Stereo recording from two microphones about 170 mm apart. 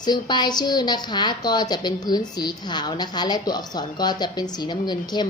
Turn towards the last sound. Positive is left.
turn(degrees=25)  # may be behind; listen again after turning